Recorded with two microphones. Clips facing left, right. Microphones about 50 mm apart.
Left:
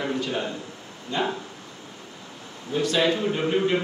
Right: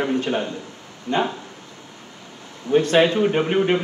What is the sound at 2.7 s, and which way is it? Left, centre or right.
Speech, right.